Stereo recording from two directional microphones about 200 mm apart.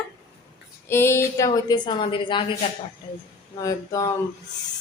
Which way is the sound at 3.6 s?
15° left (ahead or behind).